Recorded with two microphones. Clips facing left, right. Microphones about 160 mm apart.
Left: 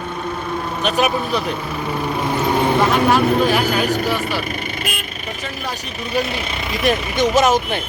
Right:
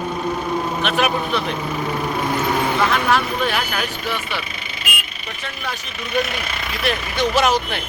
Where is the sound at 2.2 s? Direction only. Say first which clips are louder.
Left 3 dB; 10° left (ahead or behind).